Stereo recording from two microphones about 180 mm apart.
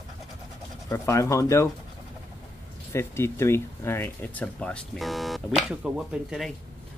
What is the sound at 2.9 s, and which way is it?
Speech, 15° left (ahead or behind).